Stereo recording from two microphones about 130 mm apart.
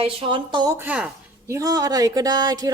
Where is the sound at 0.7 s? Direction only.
10° right (ahead or behind).